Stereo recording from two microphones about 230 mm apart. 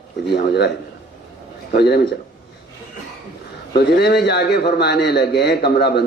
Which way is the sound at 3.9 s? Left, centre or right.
Left.